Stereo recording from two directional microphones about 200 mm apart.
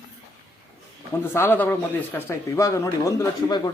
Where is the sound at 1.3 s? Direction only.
10° left (ahead or behind).